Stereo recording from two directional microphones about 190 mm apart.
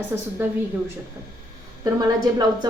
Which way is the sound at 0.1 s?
10° right (ahead or behind).